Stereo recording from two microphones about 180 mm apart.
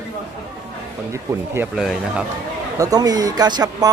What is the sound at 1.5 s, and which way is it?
Speech, 10° right (ahead or behind).